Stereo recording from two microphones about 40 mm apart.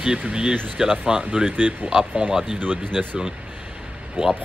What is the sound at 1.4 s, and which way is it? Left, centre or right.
Speech, right.